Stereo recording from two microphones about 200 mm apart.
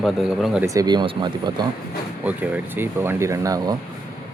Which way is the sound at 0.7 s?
20° right (ahead or behind).